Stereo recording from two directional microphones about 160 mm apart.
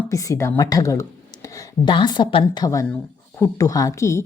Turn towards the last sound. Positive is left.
turn(degrees=20)  # may be behind; listen again after turning